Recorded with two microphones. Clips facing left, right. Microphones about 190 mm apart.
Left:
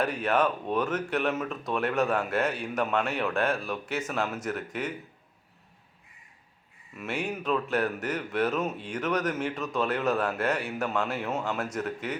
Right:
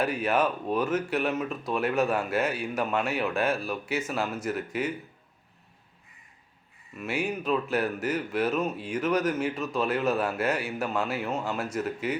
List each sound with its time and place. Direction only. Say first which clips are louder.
0.0 s speech: even; 5° right (ahead or behind)
6.9 s speech: right 2 dB; centre (ahead or behind)